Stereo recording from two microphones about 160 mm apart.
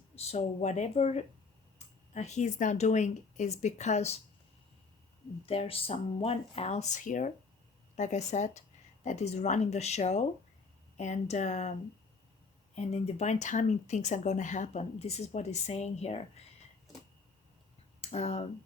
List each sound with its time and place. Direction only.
0.2 s speech: 40° left (ahead or behind)
5.5 s speech: 35° left (ahead or behind)
12.7 s speech: 40° left (ahead or behind)
18.0 s speech: 45° left (ahead or behind)